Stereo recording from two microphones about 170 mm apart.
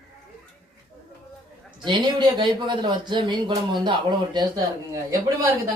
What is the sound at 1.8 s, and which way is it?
Speech, 25° right (ahead or behind).